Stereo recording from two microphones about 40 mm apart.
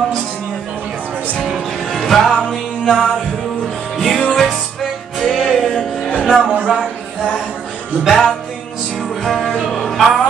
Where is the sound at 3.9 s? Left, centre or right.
Centre.